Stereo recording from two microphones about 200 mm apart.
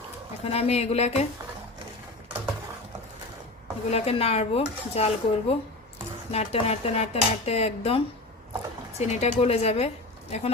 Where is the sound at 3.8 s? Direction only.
30° left (ahead or behind).